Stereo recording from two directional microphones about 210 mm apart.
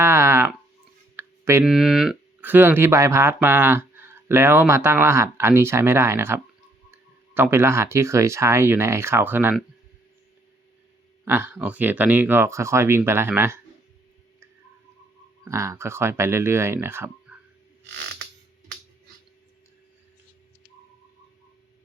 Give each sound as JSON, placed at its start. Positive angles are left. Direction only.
{"t": 0.0, "sound": "a sound", "side_deg": -10}
{"t": 1.7, "sound": "speech", "side_deg": 0}
{"t": 11.3, "sound": "speech", "side_deg": -10}
{"t": 15.4, "sound": "speech", "side_deg": -15}